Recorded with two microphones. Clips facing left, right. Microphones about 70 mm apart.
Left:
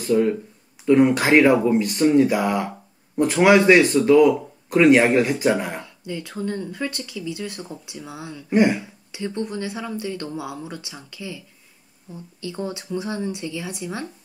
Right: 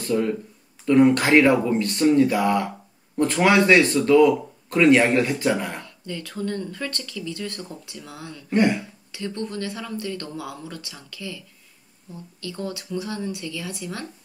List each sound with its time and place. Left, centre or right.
0.0 s speech: centre